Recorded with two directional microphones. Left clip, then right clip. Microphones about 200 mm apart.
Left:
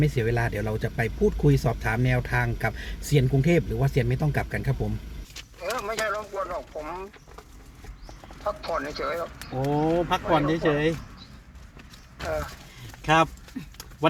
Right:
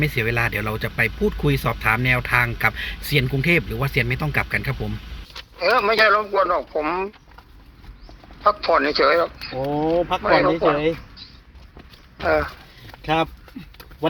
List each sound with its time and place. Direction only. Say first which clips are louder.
0.0 s speech: right 5 dB; 10° left (ahead or behind)
5.3 s speech: right 12 dB; 40° right (ahead or behind)
8.4 s speech: right 12 dB; 40° right (ahead or behind)
9.6 s speech: right 4 dB; centre (ahead or behind)
10.2 s speech: right 9 dB; 35° right (ahead or behind)
12.2 s speech: right 10 dB; 40° right (ahead or behind)